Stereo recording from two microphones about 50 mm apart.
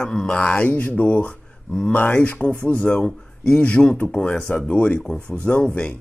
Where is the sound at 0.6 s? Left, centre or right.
Left.